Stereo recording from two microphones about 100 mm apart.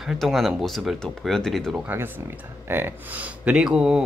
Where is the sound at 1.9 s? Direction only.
20° right (ahead or behind).